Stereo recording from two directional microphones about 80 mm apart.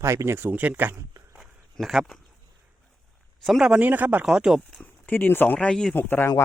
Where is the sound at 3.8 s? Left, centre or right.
Right.